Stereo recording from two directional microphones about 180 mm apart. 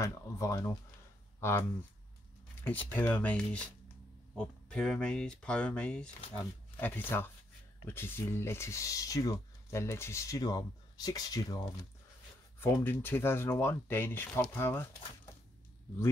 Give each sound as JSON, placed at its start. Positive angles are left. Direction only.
{"t": 0.0, "sound": "speech", "side_deg": 15}
{"t": 2.9, "sound": "speech", "side_deg": 10}